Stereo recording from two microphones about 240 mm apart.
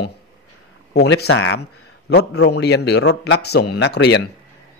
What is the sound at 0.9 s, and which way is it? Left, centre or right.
A man's voice, left.